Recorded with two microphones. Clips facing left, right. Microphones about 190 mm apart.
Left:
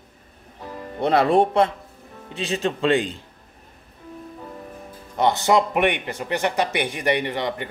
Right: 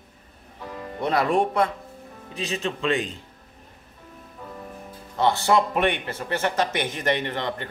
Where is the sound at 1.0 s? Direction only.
30° left (ahead or behind).